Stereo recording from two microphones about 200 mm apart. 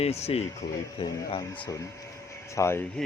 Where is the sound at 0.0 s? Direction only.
30° left (ahead or behind).